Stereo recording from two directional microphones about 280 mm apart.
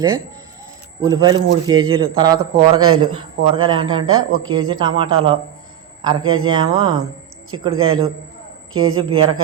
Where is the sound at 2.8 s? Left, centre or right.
Right.